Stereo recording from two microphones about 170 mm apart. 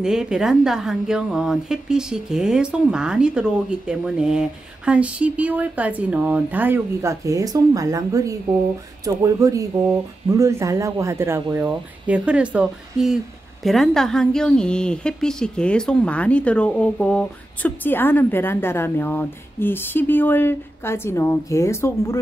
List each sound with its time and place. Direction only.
0.0 s a woman's voice: 5° right (ahead or behind); by 22.2 s 15° left (ahead or behind)